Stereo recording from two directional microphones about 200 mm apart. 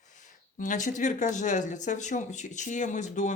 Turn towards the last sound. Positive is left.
turn(degrees=35)  # may be behind; listen again after turning